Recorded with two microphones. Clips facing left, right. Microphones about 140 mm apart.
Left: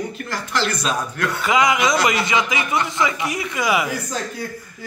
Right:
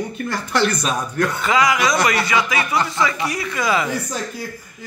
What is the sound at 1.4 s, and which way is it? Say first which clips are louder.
A man's voice: left 1 dB; 20° left (ahead or behind).